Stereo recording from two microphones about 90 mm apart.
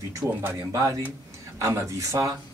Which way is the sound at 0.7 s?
40° right (ahead or behind).